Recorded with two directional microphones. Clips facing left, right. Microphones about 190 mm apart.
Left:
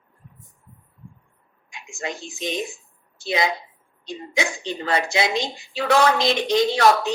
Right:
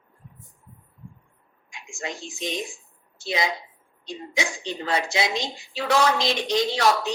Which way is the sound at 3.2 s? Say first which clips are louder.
Left 3 dB; 55° left (ahead or behind).